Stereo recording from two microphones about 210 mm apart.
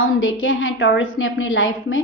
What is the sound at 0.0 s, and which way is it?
A woman's voice, 75° left (ahead or behind).